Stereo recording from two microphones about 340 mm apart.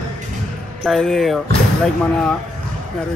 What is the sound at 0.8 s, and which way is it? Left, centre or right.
Speech, centre.